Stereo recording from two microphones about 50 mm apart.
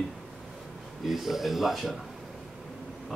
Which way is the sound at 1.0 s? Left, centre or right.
Centre.